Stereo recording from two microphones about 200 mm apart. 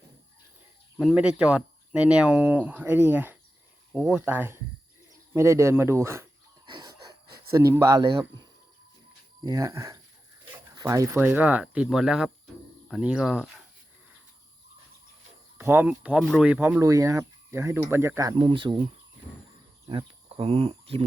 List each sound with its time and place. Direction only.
0.9 s speech: 5° right (ahead or behind)
6.7 s wheeze: 20° right (ahead or behind)
7.5 s speech: 15° right (ahead or behind)
15.5 s speech: 10° right (ahead or behind)
19.9 s speech: 25° right (ahead or behind)